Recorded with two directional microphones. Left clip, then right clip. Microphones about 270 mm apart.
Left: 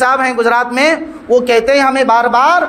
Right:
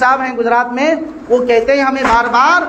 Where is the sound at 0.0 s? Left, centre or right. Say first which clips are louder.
Left 1 dB; left.